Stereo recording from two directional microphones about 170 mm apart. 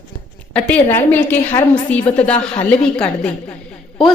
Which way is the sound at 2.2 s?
5° left (ahead or behind).